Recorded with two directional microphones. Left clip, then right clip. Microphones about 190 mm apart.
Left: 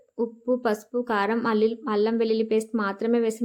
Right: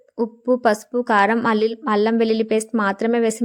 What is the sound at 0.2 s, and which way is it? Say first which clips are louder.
A woman's voice: right 6 dB; 35° right (ahead or behind).